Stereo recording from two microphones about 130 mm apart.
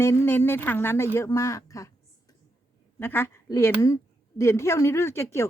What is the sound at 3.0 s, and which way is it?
A woman's voice, 15° left (ahead or behind).